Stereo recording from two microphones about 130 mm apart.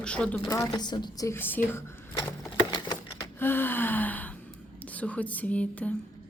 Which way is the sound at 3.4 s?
15° left (ahead or behind).